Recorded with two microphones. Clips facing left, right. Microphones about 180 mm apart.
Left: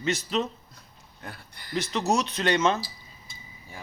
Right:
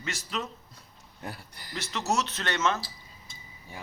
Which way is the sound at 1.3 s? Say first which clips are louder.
Even; 40° right (ahead or behind).